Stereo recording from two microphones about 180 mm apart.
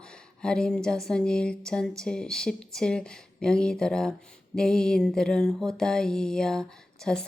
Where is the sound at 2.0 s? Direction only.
5° left (ahead or behind).